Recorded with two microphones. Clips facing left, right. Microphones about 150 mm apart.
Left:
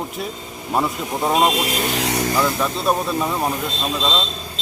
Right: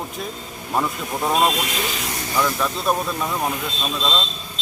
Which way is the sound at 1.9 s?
75° left (ahead or behind).